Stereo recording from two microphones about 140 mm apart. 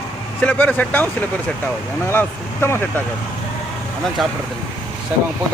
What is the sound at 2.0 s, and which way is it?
Speech, 15° left (ahead or behind).